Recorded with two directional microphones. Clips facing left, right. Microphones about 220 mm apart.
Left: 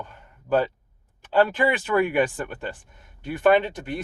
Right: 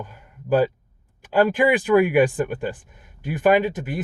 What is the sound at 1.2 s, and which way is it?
Speech, 10° right (ahead or behind).